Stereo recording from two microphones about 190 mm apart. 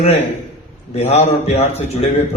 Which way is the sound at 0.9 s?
35° left (ahead or behind).